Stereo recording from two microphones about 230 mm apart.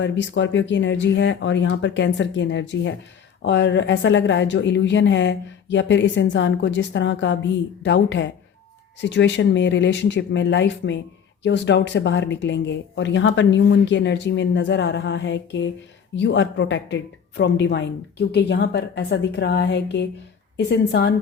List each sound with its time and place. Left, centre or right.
0.0 s speech: left